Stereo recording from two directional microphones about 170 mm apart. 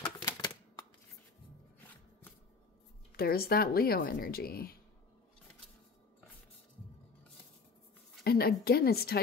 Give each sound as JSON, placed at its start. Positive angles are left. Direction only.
{"t": 0.2, "sound": "typewriter", "side_deg": 25}
{"t": 3.2, "sound": "speech", "side_deg": 65}
{"t": 8.2, "sound": "a woman's voice", "side_deg": 65}